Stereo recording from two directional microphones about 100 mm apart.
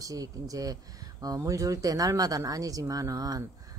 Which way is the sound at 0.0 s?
35° right (ahead or behind).